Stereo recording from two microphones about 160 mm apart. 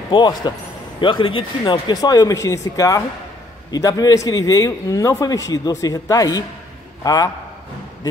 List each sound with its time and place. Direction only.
0.1 s a man's voice: 25° left (ahead or behind)